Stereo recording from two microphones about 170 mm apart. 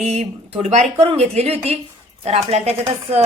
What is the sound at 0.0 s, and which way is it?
Speech, 40° right (ahead or behind).